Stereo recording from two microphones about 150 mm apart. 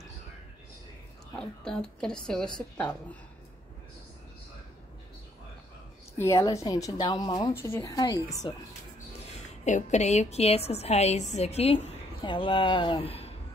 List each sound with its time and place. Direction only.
1.4 s a woman's voice: 5° left (ahead or behind)
6.1 s speech: 20° left (ahead or behind)
7.5 s speech: 15° left (ahead or behind)
9.7 s a woman's voice: 50° left (ahead or behind)